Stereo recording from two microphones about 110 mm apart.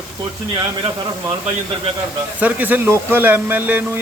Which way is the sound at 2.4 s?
15° right (ahead or behind).